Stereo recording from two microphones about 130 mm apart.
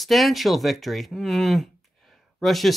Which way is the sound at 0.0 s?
Centre (ahead or behind).